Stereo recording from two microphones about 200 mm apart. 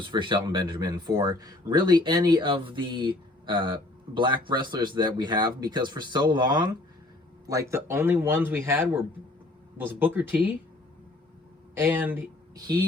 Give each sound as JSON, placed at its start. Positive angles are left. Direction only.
{"t": 0.0, "sound": "speech", "side_deg": -25}
{"t": 11.8, "sound": "speech", "side_deg": -10}